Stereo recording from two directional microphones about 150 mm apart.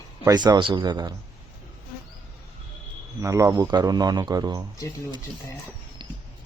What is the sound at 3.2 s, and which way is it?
Speech, 20° right (ahead or behind).